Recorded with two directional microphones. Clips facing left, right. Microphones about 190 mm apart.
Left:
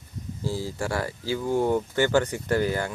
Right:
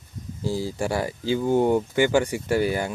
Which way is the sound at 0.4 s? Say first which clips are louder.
Right 3 dB; 15° right (ahead or behind).